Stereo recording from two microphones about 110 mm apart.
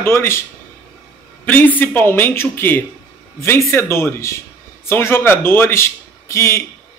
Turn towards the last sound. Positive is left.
turn(degrees=25)  # may be behind; listen again after turning